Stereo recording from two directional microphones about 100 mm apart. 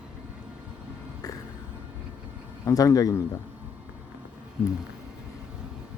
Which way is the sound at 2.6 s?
35° left (ahead or behind).